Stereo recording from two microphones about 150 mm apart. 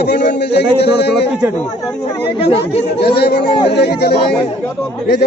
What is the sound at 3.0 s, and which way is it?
Speech, 90° left.